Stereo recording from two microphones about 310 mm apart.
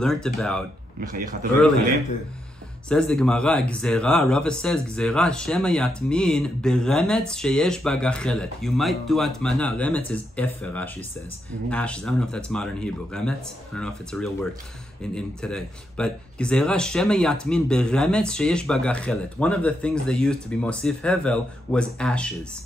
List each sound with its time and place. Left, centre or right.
0.0 s speech: centre
1.0 s speech: right
2.9 s speech: centre